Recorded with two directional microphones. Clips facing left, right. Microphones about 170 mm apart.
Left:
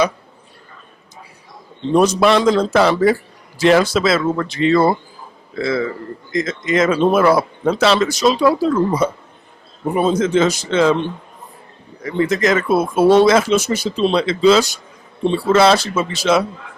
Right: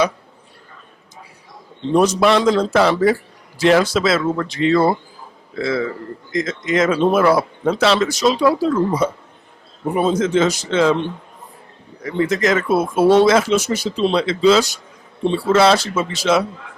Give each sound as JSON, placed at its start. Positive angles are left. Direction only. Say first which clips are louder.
{"t": 1.9, "sound": "speech", "louder": "left 1 dB", "side_deg": 30}
{"t": 2.2, "sound": "speech", "louder": "left 1 dB", "side_deg": 20}
{"t": 10.2, "sound": "speech", "louder": "left 1 dB", "side_deg": 15}
{"t": 12.6, "sound": "speech", "louder": "left 1 dB", "side_deg": 30}
{"t": 13.2, "sound": "speech", "louder": "left 1 dB", "side_deg": 20}
{"t": 15.2, "sound": "speech", "louder": "left 1 dB", "side_deg": 30}
{"t": 15.5, "sound": "speech", "louder": "left 1 dB", "side_deg": 10}